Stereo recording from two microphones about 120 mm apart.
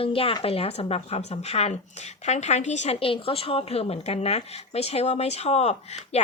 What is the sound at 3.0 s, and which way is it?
A woman's voice, 50° left (ahead or behind).